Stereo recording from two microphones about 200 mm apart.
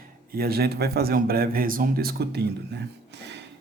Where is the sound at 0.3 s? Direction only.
50° right (ahead or behind).